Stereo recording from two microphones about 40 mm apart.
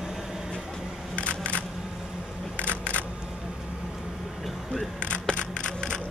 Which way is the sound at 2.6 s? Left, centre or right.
Right.